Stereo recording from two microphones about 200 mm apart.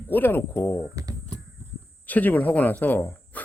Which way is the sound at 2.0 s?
10° left (ahead or behind).